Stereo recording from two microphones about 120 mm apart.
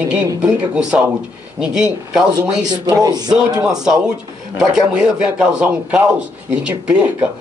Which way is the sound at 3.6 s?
5° right (ahead or behind).